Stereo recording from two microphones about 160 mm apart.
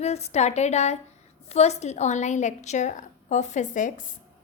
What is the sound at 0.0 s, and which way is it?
A woman's voice, 40° left (ahead or behind).